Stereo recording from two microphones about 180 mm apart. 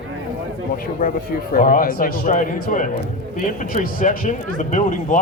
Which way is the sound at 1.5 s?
50° left (ahead or behind).